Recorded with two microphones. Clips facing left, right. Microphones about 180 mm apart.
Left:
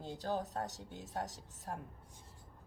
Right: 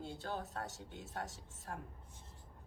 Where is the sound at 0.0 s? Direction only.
40° left (ahead or behind).